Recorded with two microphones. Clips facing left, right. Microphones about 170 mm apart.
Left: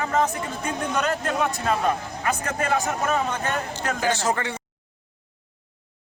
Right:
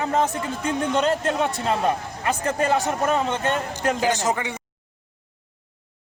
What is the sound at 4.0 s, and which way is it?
Speech, 15° right (ahead or behind).